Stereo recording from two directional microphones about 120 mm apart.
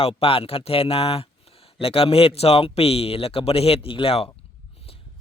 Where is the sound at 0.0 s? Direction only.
50° left (ahead or behind).